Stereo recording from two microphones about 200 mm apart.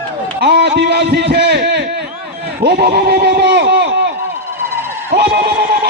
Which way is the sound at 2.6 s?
55° right (ahead or behind).